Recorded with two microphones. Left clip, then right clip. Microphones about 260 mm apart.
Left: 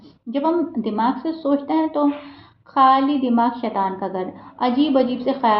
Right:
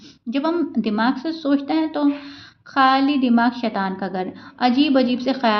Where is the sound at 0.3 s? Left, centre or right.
Right.